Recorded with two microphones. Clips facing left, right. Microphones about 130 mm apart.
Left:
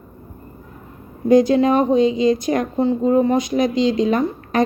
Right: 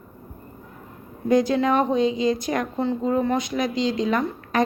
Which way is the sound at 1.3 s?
20° left (ahead or behind).